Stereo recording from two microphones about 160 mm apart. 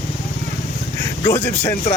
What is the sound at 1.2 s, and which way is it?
Speech, 20° left (ahead or behind).